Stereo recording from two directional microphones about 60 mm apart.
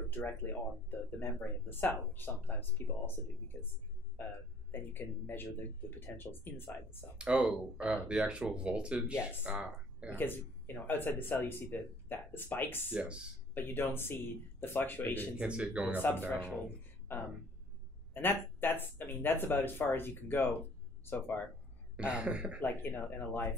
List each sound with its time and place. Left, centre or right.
0.8 s speech: left
4.2 s speech: left
7.2 s speech: centre
10.1 s speech: left
12.9 s speech: centre
13.6 s speech: left
15.3 s speech: centre
16.0 s speech: left
21.9 s speech: centre
22.6 s speech: left